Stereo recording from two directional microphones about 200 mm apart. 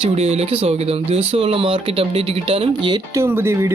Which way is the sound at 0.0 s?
30° right (ahead or behind).